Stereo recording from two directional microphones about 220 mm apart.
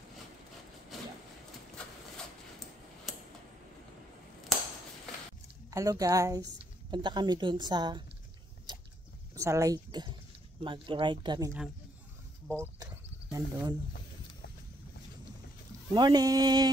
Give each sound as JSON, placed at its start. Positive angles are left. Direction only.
{"t": 5.7, "sound": "a woman's voice", "side_deg": -15}
{"t": 8.7, "sound": "a sound", "side_deg": -20}
{"t": 9.3, "sound": "a woman's voice", "side_deg": -15}
{"t": 13.3, "sound": "a woman's voice", "side_deg": -20}
{"t": 15.9, "sound": "speech", "side_deg": -20}